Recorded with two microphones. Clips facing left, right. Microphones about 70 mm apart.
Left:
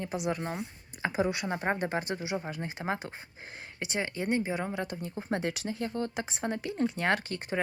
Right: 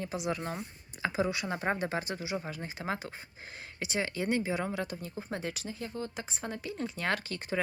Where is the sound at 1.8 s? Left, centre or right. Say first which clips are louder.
Left 2 dB; left.